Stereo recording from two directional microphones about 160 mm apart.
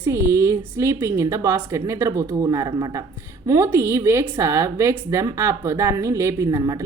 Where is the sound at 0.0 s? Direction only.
15° right (ahead or behind).